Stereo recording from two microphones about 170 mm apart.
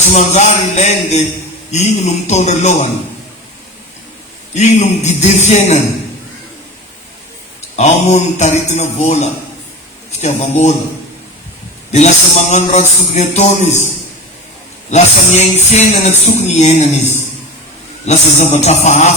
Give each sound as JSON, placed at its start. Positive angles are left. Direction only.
{"t": 0.1, "sound": "a man's voice", "side_deg": 45}
{"t": 4.5, "sound": "music", "side_deg": 40}
{"t": 7.8, "sound": "music", "side_deg": 40}
{"t": 11.9, "sound": "music", "side_deg": 40}
{"t": 14.8, "sound": "a man's voice", "side_deg": 40}
{"t": 18.0, "sound": "music", "side_deg": 40}